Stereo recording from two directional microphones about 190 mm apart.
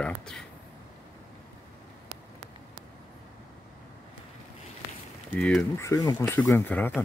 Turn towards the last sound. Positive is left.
turn(degrees=10)  # may be behind; listen again after turning